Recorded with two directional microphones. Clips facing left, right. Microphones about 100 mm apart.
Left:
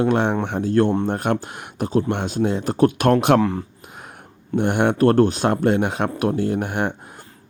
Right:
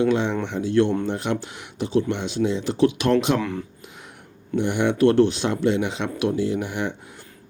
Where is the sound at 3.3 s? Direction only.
35° left (ahead or behind).